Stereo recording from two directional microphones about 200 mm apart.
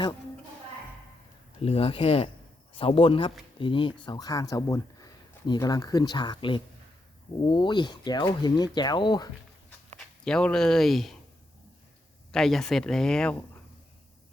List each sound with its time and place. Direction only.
1.6 s speech: 30° left (ahead or behind)
10.2 s speech: 5° left (ahead or behind)
12.3 s speech: centre (ahead or behind)